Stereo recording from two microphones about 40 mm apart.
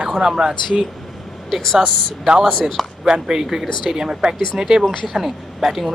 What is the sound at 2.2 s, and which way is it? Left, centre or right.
Speech, centre.